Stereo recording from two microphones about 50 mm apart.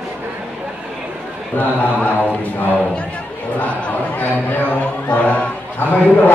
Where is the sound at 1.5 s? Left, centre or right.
Left.